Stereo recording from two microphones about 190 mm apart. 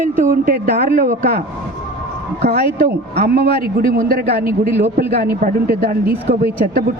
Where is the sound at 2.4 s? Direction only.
55° right (ahead or behind).